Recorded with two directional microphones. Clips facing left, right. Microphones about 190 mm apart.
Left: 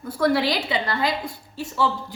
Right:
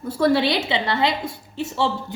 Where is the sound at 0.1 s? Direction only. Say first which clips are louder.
Right 2 dB; 30° right (ahead or behind).